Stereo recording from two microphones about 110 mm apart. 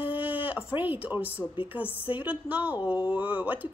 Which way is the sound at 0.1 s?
15° right (ahead or behind).